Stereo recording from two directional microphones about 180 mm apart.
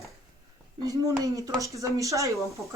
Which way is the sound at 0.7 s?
20° right (ahead or behind).